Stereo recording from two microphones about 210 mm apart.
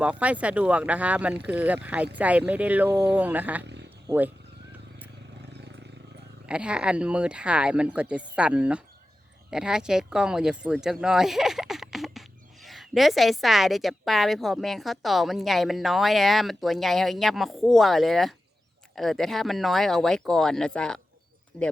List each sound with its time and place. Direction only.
0.0 s speech: 5° right (ahead or behind)
6.5 s a woman's voice: 5° right (ahead or behind)